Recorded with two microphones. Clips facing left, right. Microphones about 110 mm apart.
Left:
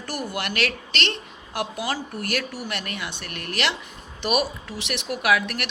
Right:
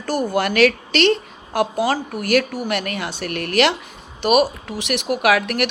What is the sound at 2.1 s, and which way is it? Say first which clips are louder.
Speech: right 9 dB; 90° right.